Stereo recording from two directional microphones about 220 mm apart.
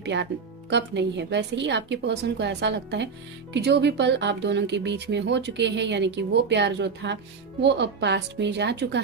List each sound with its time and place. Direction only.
0.0 s speech: 50° right (ahead or behind)